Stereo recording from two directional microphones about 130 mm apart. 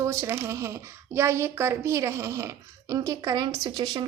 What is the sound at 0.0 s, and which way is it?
A woman's voice, 20° right (ahead or behind).